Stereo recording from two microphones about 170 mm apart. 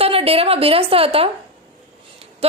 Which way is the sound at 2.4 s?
35° right (ahead or behind).